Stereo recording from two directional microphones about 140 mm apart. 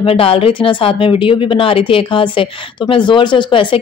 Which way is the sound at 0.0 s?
40° left (ahead or behind).